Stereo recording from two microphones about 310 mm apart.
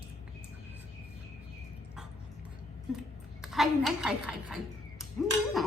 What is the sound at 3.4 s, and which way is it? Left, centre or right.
A woman's voice, centre.